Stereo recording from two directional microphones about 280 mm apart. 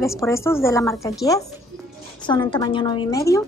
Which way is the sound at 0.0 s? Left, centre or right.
Centre.